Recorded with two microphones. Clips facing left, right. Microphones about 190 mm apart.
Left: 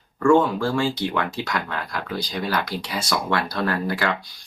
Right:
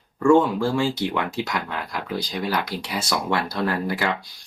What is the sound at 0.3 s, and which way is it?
Speech, 15° right (ahead or behind).